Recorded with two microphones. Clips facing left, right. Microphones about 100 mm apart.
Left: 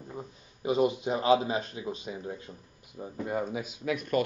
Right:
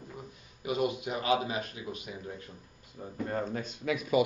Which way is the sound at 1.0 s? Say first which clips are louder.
Left 5 dB; 30° left (ahead or behind).